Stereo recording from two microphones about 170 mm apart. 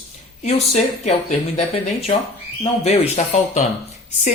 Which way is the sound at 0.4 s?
40° left (ahead or behind).